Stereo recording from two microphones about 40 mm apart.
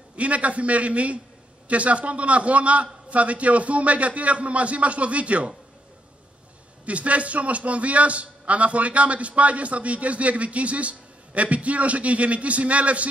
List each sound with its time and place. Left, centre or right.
0.1 s a man's voice: right
6.9 s a man's voice: right